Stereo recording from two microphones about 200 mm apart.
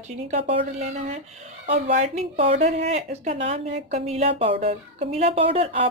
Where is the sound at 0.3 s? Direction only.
30° right (ahead or behind).